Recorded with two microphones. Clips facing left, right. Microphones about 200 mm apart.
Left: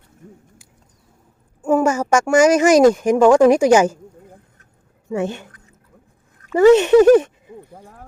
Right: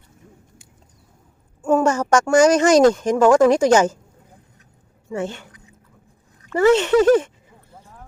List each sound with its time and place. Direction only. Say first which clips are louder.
1.6 s speech: left 1 dB; 10° left (ahead or behind)
5.0 s speech: left 4 dB; 15° left (ahead or behind)
6.5 s speech: left 5 dB; 15° left (ahead or behind)